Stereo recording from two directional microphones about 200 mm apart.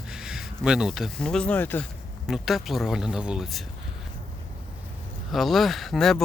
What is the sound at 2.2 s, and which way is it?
Speech, centre (ahead or behind).